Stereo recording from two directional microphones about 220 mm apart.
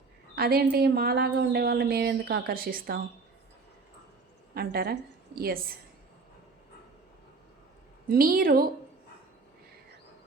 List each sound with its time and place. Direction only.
0.3 s a woman's voice: 45° right (ahead or behind)
4.5 s a woman's voice: 45° right (ahead or behind)
8.1 s a woman's voice: 40° right (ahead or behind)